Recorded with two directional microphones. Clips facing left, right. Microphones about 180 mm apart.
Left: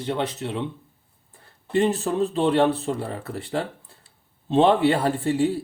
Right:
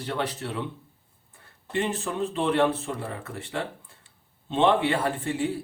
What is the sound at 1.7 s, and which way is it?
Speech, 40° left (ahead or behind).